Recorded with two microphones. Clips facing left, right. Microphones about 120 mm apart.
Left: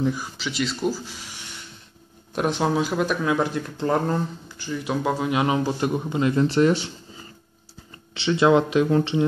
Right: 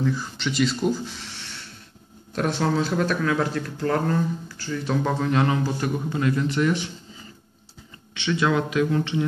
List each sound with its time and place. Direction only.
0.0 s speech: 15° left (ahead or behind)
0.4 s speech: centre (ahead or behind); by 6.9 s 30° left (ahead or behind)
8.1 s speech: 30° left (ahead or behind)